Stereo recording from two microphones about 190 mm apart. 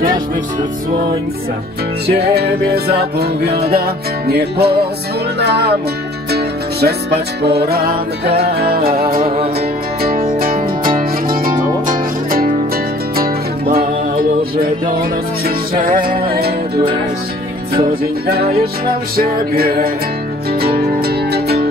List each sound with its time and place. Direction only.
2.0 s music: 60° right (ahead or behind)
15.8 s music: 50° right (ahead or behind)